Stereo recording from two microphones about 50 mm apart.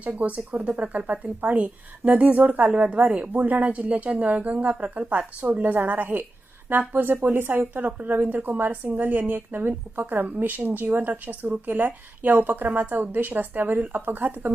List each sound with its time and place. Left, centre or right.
0.2 s a woman's voice: right
10.2 s speech: right